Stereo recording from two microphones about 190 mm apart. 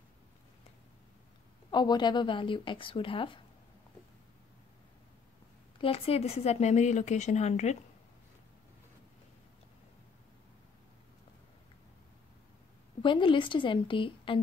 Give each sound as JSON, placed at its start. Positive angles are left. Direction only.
{"t": 1.7, "sound": "speech", "side_deg": 25}
{"t": 5.8, "sound": "speech", "side_deg": 30}
{"t": 13.0, "sound": "speech", "side_deg": 25}